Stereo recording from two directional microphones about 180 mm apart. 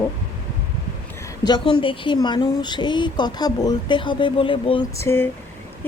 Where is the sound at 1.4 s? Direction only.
25° left (ahead or behind).